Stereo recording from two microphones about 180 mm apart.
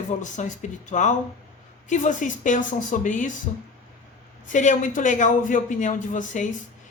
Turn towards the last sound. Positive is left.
turn(degrees=45)  # may be behind; listen again after turning